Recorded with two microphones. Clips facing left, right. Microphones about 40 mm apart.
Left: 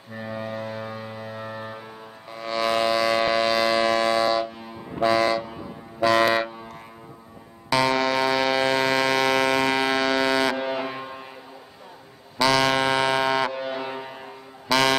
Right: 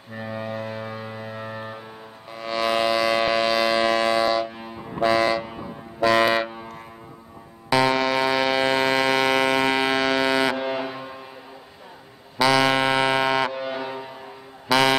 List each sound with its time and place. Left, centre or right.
0.1 s music: centre
2.3 s ship: centre
4.5 s a sound: right
5.0 s vehicle: centre
6.0 s a sound: centre
7.7 s music: centre
10.9 s foghorn: centre
12.4 s music: centre
14.7 s music: centre